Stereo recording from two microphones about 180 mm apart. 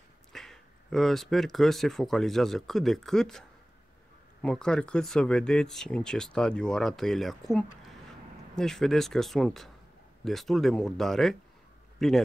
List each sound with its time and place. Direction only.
0.3 s speech: centre (ahead or behind)